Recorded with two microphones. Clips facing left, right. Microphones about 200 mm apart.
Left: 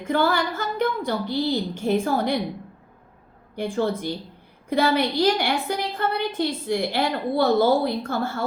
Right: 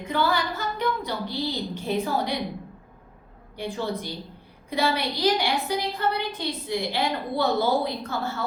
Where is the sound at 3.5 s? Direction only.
50° left (ahead or behind).